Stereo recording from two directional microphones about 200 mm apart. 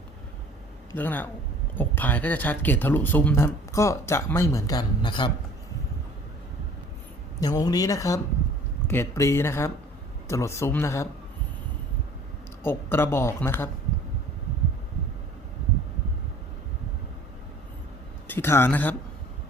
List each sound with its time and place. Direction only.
0.9 s speech: 10° left (ahead or behind)
7.4 s speech: 20° left (ahead or behind)
12.6 s speech: 10° left (ahead or behind)
18.3 s speech: 10° left (ahead or behind)